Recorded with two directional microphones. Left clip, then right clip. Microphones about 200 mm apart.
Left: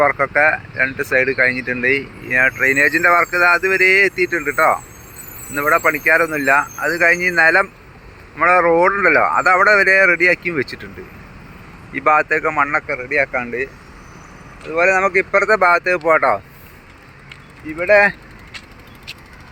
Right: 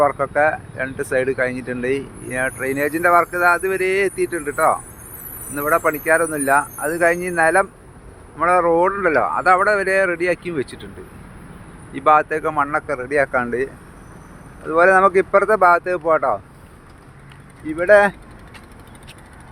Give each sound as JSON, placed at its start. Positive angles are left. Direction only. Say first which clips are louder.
{"t": 0.0, "sound": "speech", "louder": "left 2 dB", "side_deg": -5}
{"t": 11.9, "sound": "speech", "louder": "left 1 dB", "side_deg": 0}
{"t": 12.9, "sound": "speech", "louder": "even", "side_deg": -20}
{"t": 14.7, "sound": "speech", "louder": "right 2 dB", "side_deg": -25}
{"t": 17.7, "sound": "speech", "louder": "even", "side_deg": -20}